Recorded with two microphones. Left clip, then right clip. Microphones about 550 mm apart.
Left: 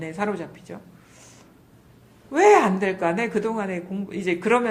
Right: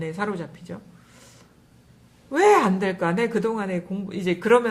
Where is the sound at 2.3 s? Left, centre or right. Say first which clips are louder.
Left 2 dB; right.